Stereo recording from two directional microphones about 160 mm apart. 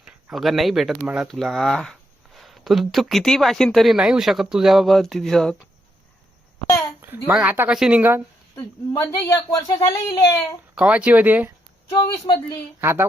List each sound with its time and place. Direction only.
0.0 s speech: 5° right (ahead or behind)
7.0 s speech: 10° right (ahead or behind)
8.5 s speech: 20° left (ahead or behind)
10.8 s speech: 10° right (ahead or behind)
11.9 s speech: 20° left (ahead or behind)
12.8 s speech: 15° right (ahead or behind)